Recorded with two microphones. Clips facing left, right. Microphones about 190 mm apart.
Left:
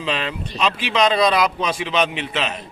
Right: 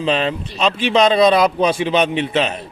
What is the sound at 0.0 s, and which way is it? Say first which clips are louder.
A man's voice: right 6 dB; 35° right (ahead or behind).